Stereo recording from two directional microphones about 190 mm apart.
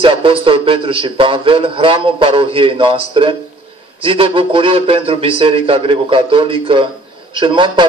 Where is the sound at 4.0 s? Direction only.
30° right (ahead or behind).